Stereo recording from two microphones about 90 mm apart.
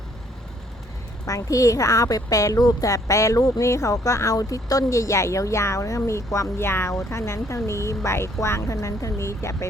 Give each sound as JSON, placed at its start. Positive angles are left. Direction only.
{"t": 1.2, "sound": "a woman's voice", "side_deg": 40}